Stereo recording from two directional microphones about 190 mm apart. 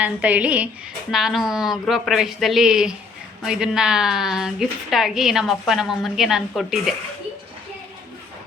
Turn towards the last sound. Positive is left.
turn(degrees=0)  # may be behind; listen again after turning